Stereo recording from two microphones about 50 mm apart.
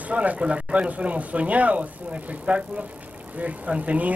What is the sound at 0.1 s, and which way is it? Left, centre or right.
A man's voice, right.